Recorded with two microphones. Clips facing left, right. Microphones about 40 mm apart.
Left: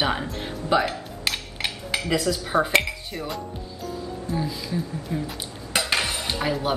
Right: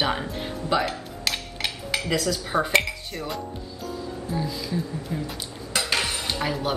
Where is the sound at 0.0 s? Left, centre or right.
Centre.